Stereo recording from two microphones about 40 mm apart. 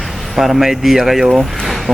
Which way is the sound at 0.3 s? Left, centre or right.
Centre.